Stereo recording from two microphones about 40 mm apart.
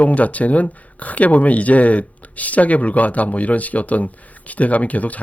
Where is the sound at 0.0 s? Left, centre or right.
Left.